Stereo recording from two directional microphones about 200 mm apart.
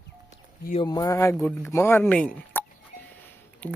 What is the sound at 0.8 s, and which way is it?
Speech, 20° left (ahead or behind).